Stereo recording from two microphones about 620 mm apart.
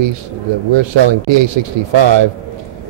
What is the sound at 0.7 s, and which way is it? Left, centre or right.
A man's voice, right.